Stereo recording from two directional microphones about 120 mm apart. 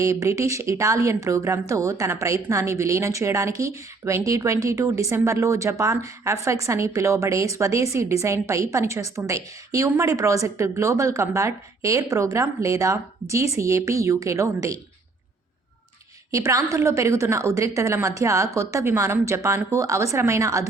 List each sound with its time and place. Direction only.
0.0 s a woman's voice: 25° right (ahead or behind)
16.3 s a woman's voice: 25° right (ahead or behind)